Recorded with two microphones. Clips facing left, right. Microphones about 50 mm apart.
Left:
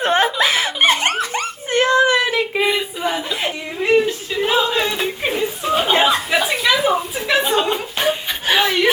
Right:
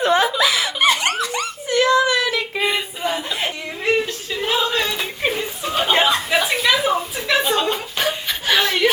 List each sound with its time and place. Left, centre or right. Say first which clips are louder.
0.0 s snicker: even; left
3.0 s whimper: left 2 dB; centre
5.4 s chuckle: left 4 dB; centre